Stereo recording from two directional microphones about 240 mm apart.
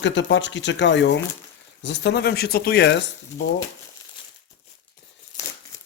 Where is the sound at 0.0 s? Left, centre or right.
Left.